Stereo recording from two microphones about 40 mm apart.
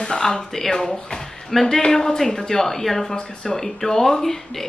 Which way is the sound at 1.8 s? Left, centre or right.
Centre.